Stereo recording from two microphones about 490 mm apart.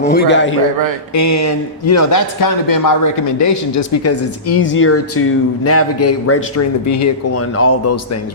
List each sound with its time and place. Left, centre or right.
0.0 s a man's voice: centre
1.1 s a man's voice: left